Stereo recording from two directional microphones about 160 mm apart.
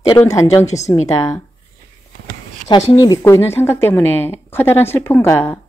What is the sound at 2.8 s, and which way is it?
Speech, 30° left (ahead or behind).